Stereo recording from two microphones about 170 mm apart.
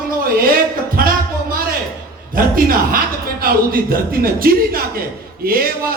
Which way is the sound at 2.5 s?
55° right (ahead or behind).